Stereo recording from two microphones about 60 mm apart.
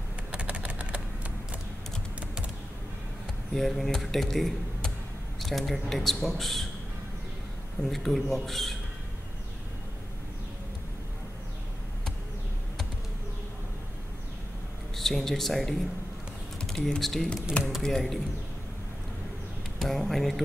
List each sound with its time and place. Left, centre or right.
0.3 s a sound: centre
3.5 s speech: centre
7.8 s speech: centre
15.0 s speech: centre
16.6 s typing: centre
17.0 s speech: centre
19.8 s speech: centre